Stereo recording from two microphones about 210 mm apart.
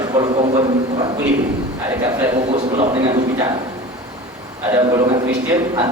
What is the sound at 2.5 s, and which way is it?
Speech, 25° right (ahead or behind).